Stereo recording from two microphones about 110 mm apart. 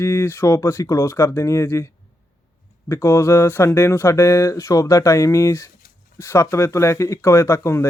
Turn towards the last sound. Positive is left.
turn(degrees=25)  # may be behind; listen again after turning